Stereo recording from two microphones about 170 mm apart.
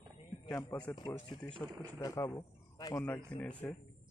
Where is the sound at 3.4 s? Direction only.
10° left (ahead or behind).